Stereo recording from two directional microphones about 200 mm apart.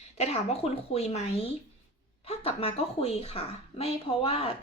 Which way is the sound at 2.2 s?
30° left (ahead or behind).